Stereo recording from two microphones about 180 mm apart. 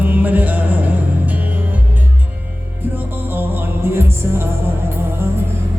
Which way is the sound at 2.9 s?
10° right (ahead or behind).